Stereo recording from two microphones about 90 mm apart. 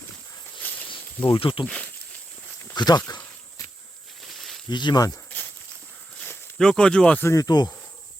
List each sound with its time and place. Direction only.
0.6 s snake: 20° left (ahead or behind)
0.9 s snake: 70° left (ahead or behind)
1.6 s speech: 15° left (ahead or behind)
2.7 s speech: 50° left (ahead or behind)
4.3 s snake: centre (ahead or behind)
4.7 s speech: 55° left (ahead or behind)
5.3 s walk: 20° left (ahead or behind)
6.6 s speech: 10° left (ahead or behind)
7.3 s speech: 50° left (ahead or behind)